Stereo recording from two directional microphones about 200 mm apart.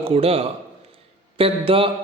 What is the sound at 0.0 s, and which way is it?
A man's voice, 30° right (ahead or behind).